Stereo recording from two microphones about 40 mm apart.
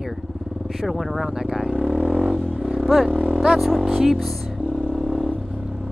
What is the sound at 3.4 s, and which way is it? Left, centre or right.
Speech, centre.